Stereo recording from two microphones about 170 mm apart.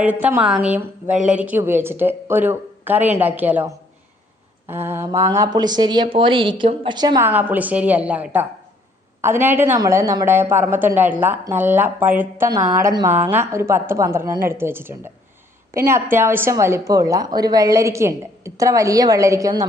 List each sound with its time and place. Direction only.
0.0 s a woman's voice: 10° right (ahead or behind); by 7.3 s 25° right (ahead or behind)
7.3 s a woman's voice: 10° right (ahead or behind)
12.5 s a woman's voice: 20° right (ahead or behind)